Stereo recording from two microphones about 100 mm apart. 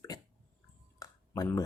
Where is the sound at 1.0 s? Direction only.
35° left (ahead or behind).